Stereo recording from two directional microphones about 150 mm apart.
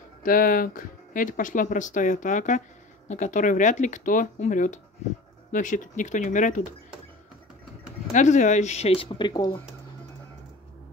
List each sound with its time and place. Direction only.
0.2 s speech: 65° left (ahead or behind)
8.1 s speech: 55° left (ahead or behind); by 9.6 s 30° left (ahead or behind)